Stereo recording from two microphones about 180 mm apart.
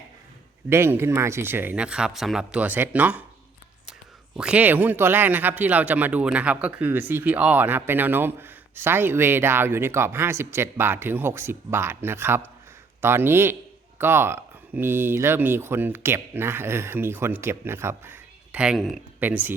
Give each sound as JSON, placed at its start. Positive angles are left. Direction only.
{"t": 0.7, "sound": "speech", "side_deg": -15}
{"t": 4.4, "sound": "speech", "side_deg": -5}